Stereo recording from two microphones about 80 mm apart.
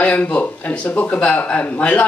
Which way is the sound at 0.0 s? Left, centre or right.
Centre.